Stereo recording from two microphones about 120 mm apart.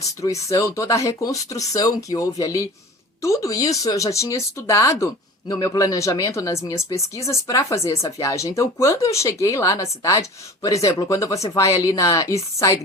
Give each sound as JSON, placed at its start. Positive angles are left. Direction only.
{"t": 0.0, "sound": "speech", "side_deg": 25}